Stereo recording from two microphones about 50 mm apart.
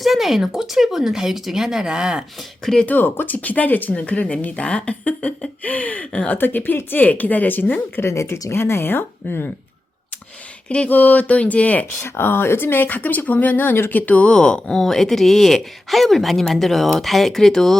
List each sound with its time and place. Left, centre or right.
0.0 s speech: centre
2.8 s speech: left
6.3 s speech: left
8.0 s a woman's voice: left
10.8 s speech: left
11.9 s speech: left
13.9 s speech: left
14.3 s speech: centre